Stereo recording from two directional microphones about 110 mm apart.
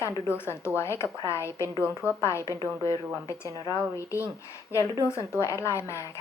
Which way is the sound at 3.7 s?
25° left (ahead or behind).